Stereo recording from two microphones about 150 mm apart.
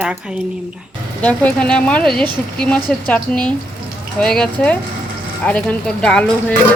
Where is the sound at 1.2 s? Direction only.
10° left (ahead or behind).